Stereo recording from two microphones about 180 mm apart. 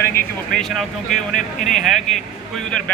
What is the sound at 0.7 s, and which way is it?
A man's voice, centre (ahead or behind).